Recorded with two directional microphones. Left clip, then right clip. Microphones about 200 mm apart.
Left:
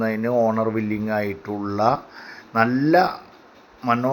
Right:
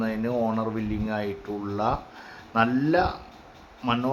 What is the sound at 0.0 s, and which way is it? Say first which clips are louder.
A man's voice: left 7 dB; 20° left (ahead or behind).